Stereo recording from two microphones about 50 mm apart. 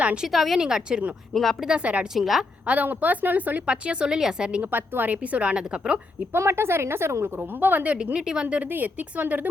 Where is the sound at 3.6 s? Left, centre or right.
Right.